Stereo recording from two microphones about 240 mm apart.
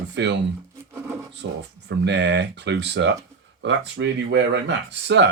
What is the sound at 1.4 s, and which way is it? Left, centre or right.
Speech, right.